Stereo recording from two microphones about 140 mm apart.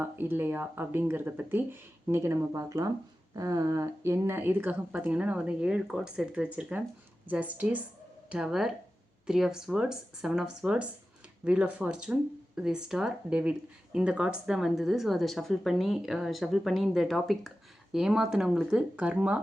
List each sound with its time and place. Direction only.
0.0 s speech: 15° right (ahead or behind)